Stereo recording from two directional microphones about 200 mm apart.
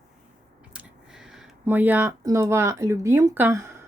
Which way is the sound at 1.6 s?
10° right (ahead or behind).